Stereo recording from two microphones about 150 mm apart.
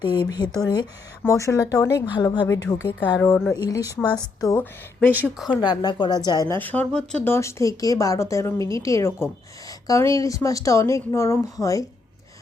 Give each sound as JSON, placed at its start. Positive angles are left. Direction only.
{"t": 0.0, "sound": "speech", "side_deg": 30}
{"t": 3.2, "sound": "a woman's voice", "side_deg": 15}
{"t": 6.6, "sound": "a woman's voice", "side_deg": 10}